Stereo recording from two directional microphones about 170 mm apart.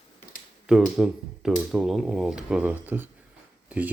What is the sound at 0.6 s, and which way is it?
Speech, 5° right (ahead or behind).